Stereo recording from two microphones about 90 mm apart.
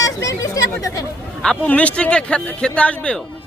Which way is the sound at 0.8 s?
40° left (ahead or behind).